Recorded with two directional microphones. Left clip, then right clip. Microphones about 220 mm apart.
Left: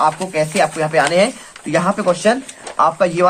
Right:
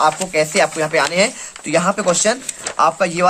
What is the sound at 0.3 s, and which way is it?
Speech, 20° right (ahead or behind).